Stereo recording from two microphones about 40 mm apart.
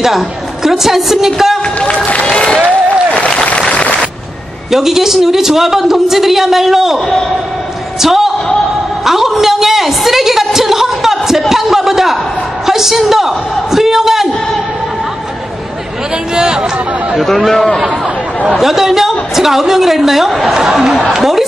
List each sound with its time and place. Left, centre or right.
0.7 s a man's voice: centre
1.8 s speech: left
3.4 s a sound: left
4.6 s a man's voice: centre
8.0 s speech: centre
9.0 s a sound: centre
12.6 s a man's voice: centre
16.3 s speech: centre
17.5 s a man's voice: centre
18.6 s a man's voice: centre